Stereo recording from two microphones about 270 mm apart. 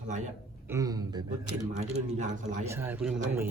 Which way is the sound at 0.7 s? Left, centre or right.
Centre.